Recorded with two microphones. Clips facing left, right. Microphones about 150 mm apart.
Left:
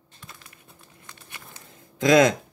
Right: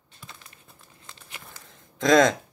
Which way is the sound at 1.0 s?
25° right (ahead or behind).